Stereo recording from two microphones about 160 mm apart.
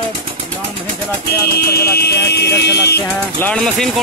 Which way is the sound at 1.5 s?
80° left.